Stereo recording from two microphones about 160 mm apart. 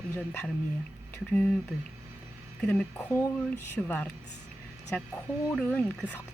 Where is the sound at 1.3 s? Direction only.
5° left (ahead or behind).